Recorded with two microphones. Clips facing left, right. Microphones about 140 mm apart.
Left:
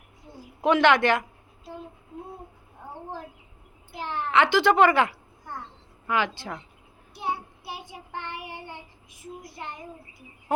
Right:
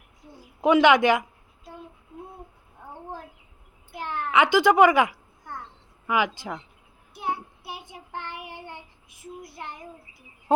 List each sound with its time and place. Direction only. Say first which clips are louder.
0.6 s speech: right 2 dB; 15° right (ahead or behind)
4.3 s speech: right 1 dB; 15° right (ahead or behind)